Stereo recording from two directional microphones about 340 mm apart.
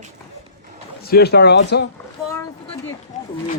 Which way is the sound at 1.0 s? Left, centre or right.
Left.